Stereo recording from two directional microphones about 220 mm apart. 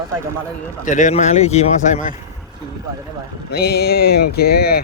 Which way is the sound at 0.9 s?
35° left (ahead or behind).